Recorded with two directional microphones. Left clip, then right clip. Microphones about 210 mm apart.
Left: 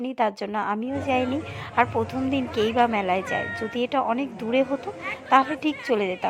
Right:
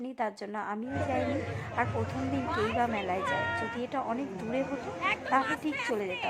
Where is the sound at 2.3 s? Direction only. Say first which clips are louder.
Left 8 dB; 35° left (ahead or behind).